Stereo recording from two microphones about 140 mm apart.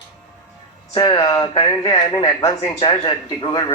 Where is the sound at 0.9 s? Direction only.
30° left (ahead or behind).